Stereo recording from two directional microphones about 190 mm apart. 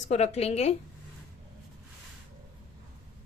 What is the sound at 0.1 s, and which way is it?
Speech, 35° left (ahead or behind).